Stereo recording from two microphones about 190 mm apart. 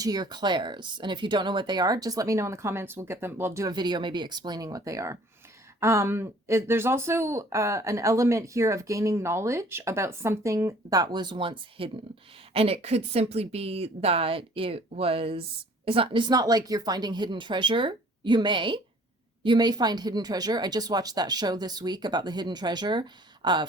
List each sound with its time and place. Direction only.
0.0 s a woman's voice: 20° right (ahead or behind)